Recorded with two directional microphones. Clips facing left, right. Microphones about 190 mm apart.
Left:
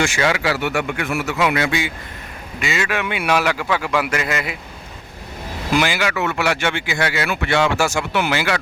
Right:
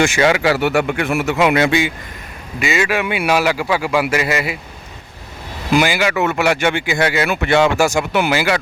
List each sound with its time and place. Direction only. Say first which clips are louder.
0.0 s a man's voice: right 5 dB; 20° right (ahead or behind)
2.6 s speech: right 4 dB; 10° right (ahead or behind)
5.7 s speech: right 4 dB; 10° right (ahead or behind)